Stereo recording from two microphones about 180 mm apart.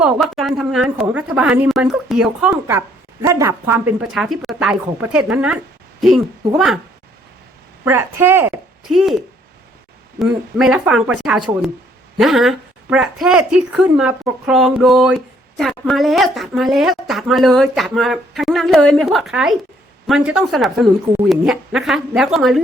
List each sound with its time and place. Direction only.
0.0 s a woman's voice: centre (ahead or behind)
4.1 s a woman's voice: centre (ahead or behind)
7.9 s a woman's voice: 15° right (ahead or behind)